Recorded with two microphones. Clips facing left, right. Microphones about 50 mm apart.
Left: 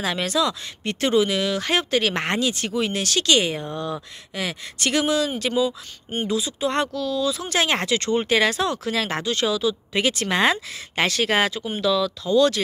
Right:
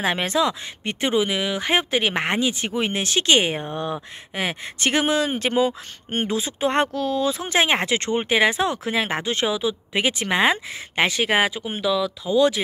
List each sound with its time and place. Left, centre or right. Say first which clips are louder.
0.0 s speech: right 1 dB; right
7.4 s speech: right 2 dB; right